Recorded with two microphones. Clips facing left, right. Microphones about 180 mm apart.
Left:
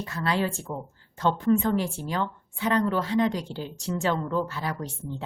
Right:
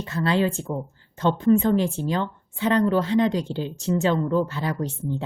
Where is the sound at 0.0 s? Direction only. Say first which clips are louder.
Right 5 dB; 25° right (ahead or behind).